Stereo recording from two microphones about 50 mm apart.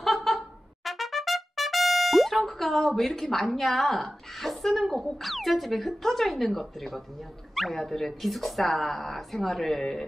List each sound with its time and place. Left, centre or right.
0.0 s trumpet: centre
7.5 s speech: centre